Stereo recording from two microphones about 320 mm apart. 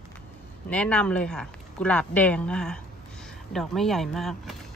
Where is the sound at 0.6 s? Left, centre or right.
Centre.